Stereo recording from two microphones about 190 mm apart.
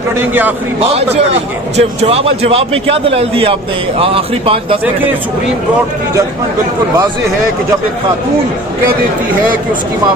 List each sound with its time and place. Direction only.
0.2 s a man's voice: 10° right (ahead or behind)
0.8 s a man's voice: 35° right (ahead or behind)